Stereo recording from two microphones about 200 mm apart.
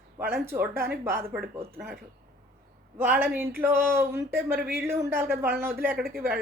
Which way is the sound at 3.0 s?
10° right (ahead or behind).